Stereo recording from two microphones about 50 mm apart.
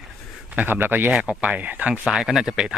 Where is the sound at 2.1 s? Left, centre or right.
Centre.